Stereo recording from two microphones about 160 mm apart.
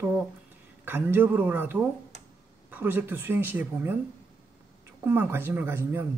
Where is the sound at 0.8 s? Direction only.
10° right (ahead or behind).